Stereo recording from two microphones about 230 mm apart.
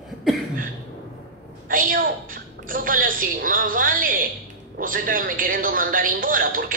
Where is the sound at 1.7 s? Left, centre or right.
Right.